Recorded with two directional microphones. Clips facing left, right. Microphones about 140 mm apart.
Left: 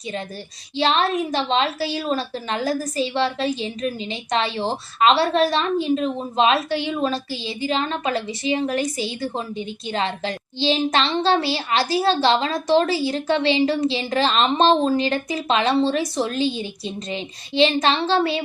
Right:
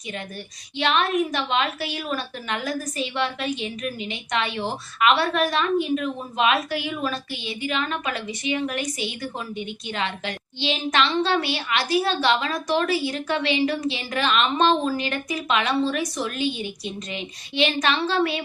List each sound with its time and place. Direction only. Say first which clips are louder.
0.8 s a woman's voice: left 2 dB; 30° left (ahead or behind)